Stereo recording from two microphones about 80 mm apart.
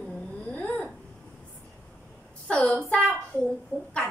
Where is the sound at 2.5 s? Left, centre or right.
Centre.